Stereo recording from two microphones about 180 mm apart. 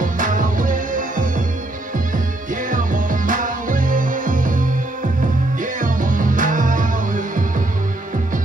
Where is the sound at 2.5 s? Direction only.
45° right (ahead or behind).